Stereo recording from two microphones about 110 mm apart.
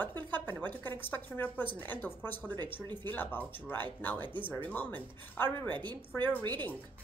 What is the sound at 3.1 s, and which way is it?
Speech, 15° left (ahead or behind).